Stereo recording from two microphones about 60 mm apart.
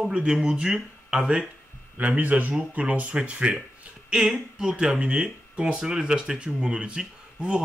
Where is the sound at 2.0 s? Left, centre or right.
Right.